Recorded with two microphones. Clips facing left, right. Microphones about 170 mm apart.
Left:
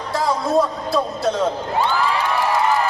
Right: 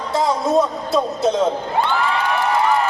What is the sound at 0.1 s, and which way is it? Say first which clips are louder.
Music: right 2 dB; 20° right (ahead or behind).